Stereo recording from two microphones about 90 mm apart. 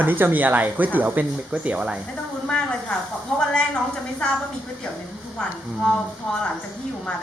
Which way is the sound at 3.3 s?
5° left (ahead or behind).